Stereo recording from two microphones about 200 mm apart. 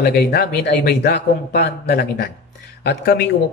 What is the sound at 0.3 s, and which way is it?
A man's voice, 55° left (ahead or behind).